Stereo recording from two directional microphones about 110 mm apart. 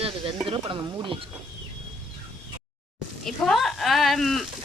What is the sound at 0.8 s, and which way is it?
Speech, 30° right (ahead or behind).